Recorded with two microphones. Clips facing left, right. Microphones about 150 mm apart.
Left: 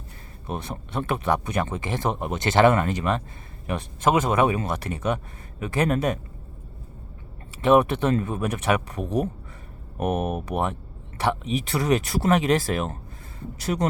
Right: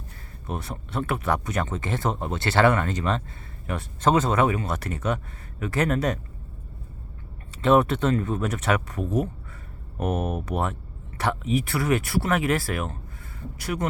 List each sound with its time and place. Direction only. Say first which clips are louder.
0.4 s speech: left 1 dB; 15° left (ahead or behind)
7.6 s speech: left 1 dB; 15° left (ahead or behind)
10.0 s speech: left 2 dB; 15° left (ahead or behind)